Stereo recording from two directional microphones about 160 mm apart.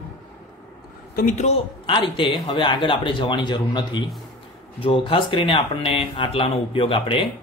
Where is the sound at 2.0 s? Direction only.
30° left (ahead or behind).